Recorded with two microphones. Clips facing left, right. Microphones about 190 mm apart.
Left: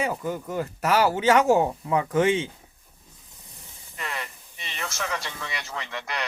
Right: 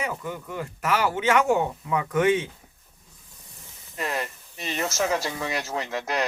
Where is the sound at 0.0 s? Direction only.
35° left (ahead or behind).